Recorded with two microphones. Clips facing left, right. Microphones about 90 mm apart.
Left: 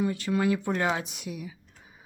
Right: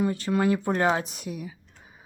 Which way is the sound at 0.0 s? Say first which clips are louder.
Right 2 dB; 40° right (ahead or behind).